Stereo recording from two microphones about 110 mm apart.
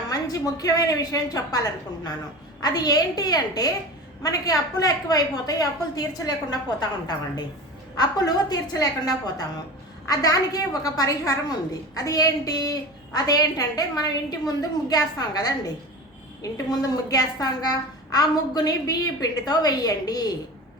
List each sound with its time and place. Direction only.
0.1 s a child's voice: 35° left (ahead or behind)